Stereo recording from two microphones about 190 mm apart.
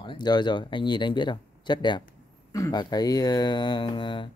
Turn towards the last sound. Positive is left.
turn(degrees=25)  # may be behind; listen again after turning